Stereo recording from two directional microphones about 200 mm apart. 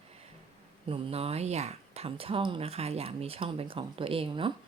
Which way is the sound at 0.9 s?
30° right (ahead or behind).